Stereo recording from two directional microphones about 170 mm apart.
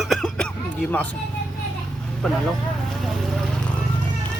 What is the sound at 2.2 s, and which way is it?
Speech, 5° left (ahead or behind).